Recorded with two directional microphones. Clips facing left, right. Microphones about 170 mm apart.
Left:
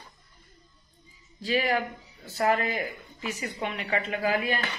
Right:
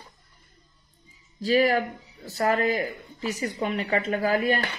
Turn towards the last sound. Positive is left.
turn(degrees=-40)  # may be behind; listen again after turning